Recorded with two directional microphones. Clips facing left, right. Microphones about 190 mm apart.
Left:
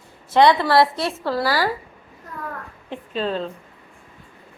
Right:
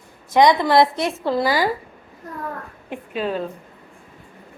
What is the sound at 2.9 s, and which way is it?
Speech, 10° right (ahead or behind).